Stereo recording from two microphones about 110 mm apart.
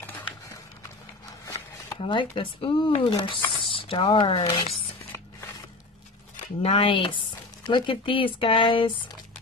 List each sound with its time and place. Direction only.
2.0 s speech: 50° left (ahead or behind)
6.6 s speech: 55° left (ahead or behind)